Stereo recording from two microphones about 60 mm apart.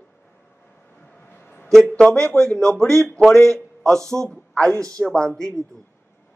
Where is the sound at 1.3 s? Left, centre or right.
Left.